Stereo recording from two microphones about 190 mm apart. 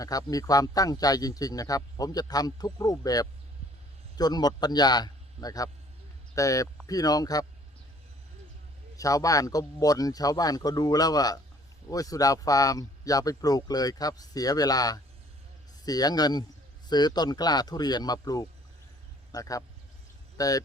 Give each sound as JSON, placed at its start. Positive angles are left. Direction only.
{"t": 0.0, "sound": "a man's voice", "side_deg": 20}
{"t": 9.0, "sound": "a man's voice", "side_deg": 20}